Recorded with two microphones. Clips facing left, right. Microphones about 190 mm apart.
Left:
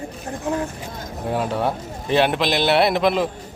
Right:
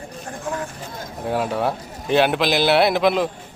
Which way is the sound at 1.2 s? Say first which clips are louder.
Even; centre (ahead or behind).